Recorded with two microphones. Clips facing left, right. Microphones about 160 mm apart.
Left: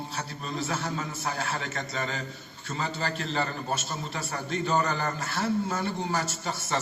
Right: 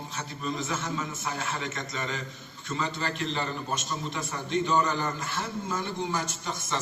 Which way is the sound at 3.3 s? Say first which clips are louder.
Left 2 dB; 40° left (ahead or behind).